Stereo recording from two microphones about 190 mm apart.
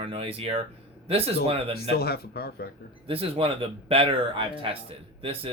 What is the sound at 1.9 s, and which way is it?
Speech, 55° left (ahead or behind).